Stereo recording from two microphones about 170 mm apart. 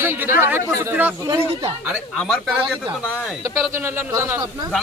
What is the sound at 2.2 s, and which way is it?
Speech, centre (ahead or behind).